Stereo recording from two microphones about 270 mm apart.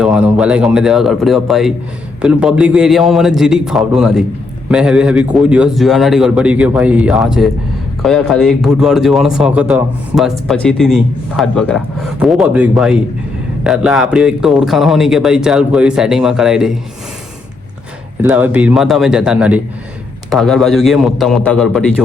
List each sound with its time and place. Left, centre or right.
0.0 s speech: centre
18.2 s speech: centre